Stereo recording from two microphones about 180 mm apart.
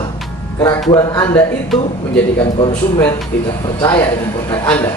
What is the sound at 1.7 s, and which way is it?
Speech, centre (ahead or behind).